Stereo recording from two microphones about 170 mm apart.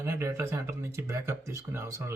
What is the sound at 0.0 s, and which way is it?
Speech, 15° right (ahead or behind).